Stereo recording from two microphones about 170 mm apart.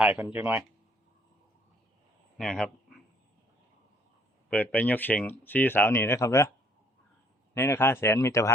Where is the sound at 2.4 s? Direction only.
5° left (ahead or behind).